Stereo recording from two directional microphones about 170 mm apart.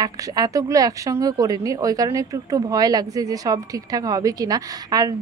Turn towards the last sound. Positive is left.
turn(degrees=-20)  # may be behind; listen again after turning